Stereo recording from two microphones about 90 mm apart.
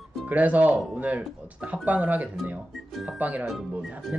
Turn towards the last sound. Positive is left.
turn(degrees=-5)  # may be behind; listen again after turning